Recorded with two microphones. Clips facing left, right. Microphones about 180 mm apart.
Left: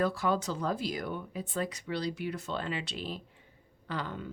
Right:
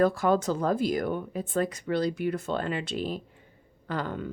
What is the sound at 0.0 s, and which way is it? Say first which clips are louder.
Speech: right 6 dB; 50° right (ahead or behind).